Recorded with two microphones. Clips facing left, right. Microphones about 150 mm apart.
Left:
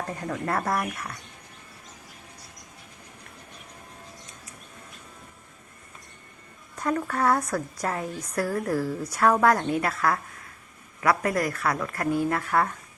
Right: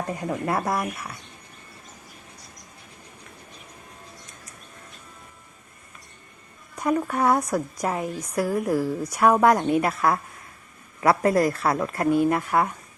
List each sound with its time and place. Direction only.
0.1 s a woman's voice: 15° right (ahead or behind)
6.7 s a woman's voice: 15° right (ahead or behind)